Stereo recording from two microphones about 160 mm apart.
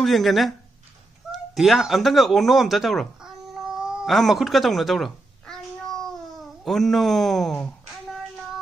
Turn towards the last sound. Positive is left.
turn(degrees=0)  # may be behind; listen again after turning